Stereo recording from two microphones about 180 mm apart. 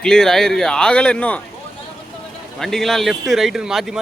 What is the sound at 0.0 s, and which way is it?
Speech, 5° left (ahead or behind).